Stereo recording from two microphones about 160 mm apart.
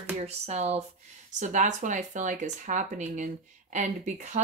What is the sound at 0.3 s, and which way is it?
Speech, 45° right (ahead or behind).